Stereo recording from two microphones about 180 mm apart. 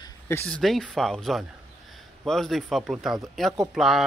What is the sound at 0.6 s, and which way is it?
A man's voice, centre (ahead or behind).